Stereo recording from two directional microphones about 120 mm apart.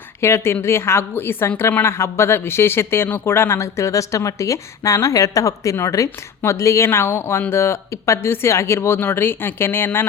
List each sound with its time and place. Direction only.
0.2 s a woman's voice: 20° left (ahead or behind)